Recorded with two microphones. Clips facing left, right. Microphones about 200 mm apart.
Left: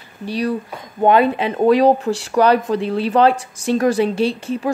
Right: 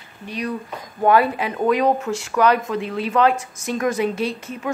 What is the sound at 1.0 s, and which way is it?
Speech, 25° left (ahead or behind).